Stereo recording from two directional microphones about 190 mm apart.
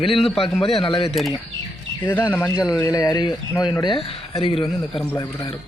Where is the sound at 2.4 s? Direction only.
15° left (ahead or behind).